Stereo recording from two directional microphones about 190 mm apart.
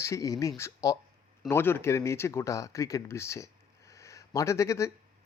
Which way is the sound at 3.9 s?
15° left (ahead or behind).